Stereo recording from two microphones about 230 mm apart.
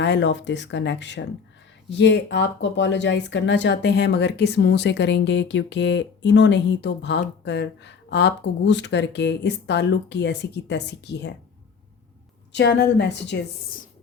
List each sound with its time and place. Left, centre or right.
0.0 s speech: left
12.5 s speech: left